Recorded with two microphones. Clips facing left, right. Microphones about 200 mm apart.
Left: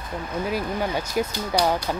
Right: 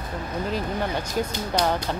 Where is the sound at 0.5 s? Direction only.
10° left (ahead or behind).